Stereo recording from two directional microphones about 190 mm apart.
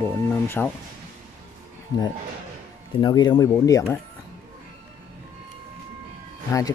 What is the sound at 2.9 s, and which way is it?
Speech, 20° left (ahead or behind).